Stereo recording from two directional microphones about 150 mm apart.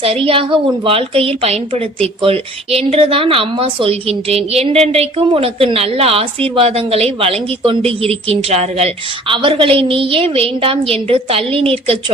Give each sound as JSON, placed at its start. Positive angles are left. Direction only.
{"t": 0.0, "sound": "a woman's voice", "side_deg": -40}